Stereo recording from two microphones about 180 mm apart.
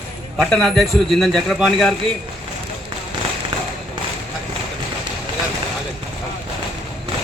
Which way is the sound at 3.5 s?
30° right (ahead or behind).